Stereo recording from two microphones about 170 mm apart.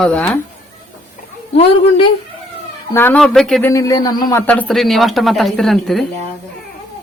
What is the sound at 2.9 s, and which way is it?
Speech, 15° left (ahead or behind).